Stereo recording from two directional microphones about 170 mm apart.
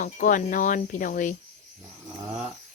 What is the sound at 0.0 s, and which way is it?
Cricket, 50° left (ahead or behind).